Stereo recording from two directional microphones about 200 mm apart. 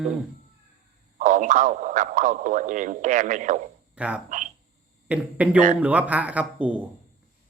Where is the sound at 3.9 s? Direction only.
5° right (ahead or behind).